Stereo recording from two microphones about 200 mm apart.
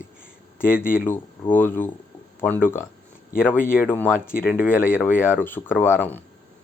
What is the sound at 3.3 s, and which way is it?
Speech, 40° left (ahead or behind).